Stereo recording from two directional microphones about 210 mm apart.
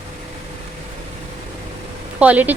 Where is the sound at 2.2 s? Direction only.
5° right (ahead or behind).